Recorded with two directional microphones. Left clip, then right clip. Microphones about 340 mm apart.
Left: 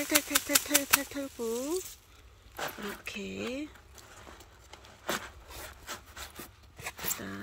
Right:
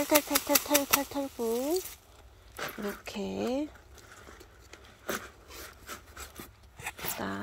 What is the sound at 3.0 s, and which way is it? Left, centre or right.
Speech, centre.